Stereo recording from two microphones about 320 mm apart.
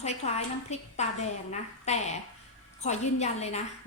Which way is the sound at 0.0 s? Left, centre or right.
Left.